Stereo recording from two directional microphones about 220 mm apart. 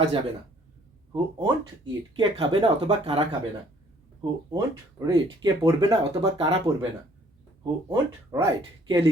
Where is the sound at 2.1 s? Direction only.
20° right (ahead or behind).